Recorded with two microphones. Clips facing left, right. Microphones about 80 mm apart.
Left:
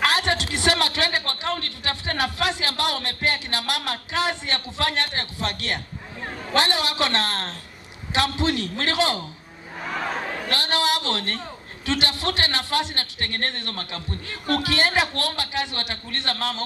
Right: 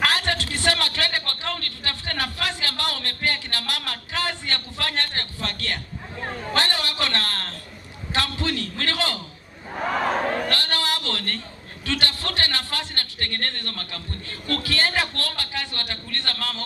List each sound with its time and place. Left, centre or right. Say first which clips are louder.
0.0 s a sound: left 2 dB; centre
6.5 s a man's voice: left 4 dB; centre
10.5 s a man's voice: left 3 dB; centre